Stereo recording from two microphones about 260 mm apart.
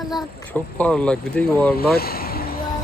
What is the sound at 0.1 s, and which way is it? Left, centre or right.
Speech, centre.